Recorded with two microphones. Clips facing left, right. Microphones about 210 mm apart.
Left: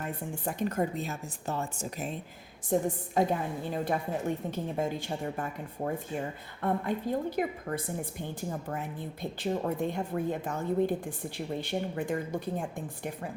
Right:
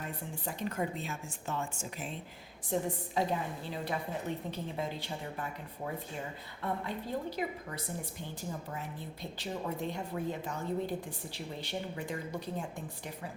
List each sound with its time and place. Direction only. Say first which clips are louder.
0.4 s a woman's voice: left 5 dB; 45° left (ahead or behind)
9.4 s a woman's voice: left 7 dB; 50° left (ahead or behind)